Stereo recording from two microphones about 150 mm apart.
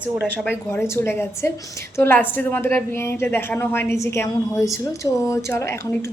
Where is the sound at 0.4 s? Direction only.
15° left (ahead or behind).